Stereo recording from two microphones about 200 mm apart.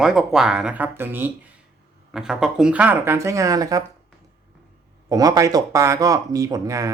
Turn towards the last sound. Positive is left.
turn(degrees=-15)  # may be behind; listen again after turning